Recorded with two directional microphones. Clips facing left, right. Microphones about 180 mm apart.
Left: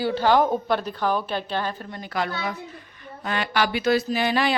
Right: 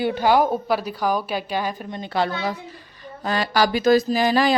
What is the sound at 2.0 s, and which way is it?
Mantra, 30° right (ahead or behind).